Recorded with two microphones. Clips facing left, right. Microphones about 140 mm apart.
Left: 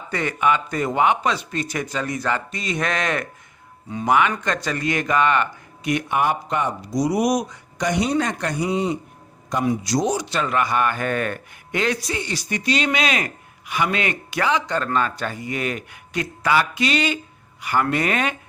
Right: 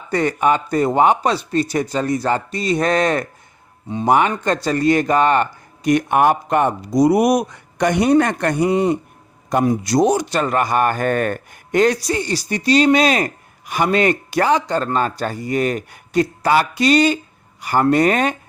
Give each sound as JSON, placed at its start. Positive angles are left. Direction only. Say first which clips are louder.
{"t": 0.1, "sound": "a man's voice", "louder": "right 4 dB", "side_deg": -35}